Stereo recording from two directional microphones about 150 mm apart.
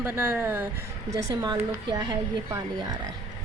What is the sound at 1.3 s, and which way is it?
A woman's voice, 25° right (ahead or behind).